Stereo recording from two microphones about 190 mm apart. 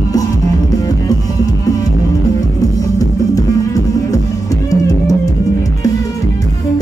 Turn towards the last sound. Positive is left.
turn(degrees=20)  # may be behind; listen again after turning